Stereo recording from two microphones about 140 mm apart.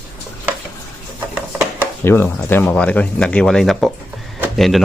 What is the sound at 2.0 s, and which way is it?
Speech, 15° left (ahead or behind).